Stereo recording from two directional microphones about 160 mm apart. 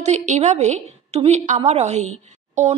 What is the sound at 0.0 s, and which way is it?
Speech, 45° right (ahead or behind).